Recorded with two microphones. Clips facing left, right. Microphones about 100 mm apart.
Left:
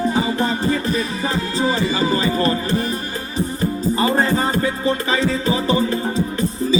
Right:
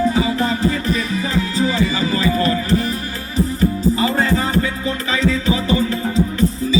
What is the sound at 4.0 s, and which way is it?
Music, 35° left (ahead or behind).